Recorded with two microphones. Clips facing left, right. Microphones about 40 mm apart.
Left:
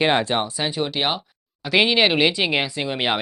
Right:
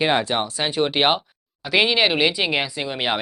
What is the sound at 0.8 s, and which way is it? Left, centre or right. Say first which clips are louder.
Speech: right 6 dB; right.